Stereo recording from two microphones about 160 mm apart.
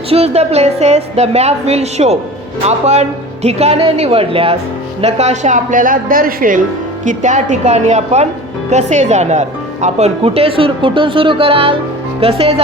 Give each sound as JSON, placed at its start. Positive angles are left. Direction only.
{"t": 0.1, "sound": "a woman's voice", "side_deg": -40}